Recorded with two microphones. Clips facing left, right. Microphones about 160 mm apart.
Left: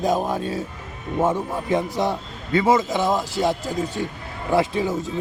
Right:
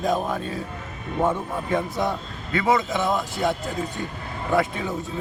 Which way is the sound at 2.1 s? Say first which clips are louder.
Left 3 dB; 30° left (ahead or behind).